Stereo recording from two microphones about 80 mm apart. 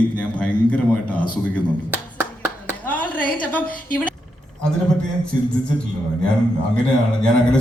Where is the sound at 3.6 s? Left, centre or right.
Centre.